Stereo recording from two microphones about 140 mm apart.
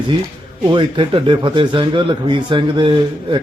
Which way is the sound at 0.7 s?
35° right (ahead or behind).